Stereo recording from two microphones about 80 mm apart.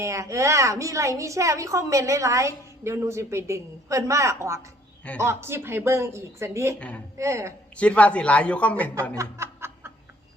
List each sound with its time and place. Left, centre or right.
0.0 s a woman's voice: right
6.7 s speech: centre
7.2 s a woman's voice: right
7.8 s speech: centre
9.1 s snicker: right